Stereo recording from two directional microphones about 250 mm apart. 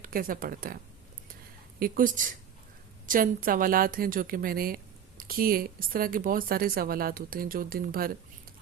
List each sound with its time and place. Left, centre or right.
0.0 s a woman's voice: right
1.8 s a woman's voice: right